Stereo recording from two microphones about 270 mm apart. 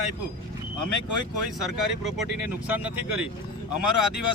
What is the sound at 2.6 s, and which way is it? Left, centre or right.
Speech, centre.